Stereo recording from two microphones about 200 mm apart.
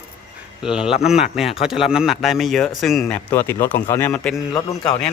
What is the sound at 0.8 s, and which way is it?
Speech, 25° left (ahead or behind).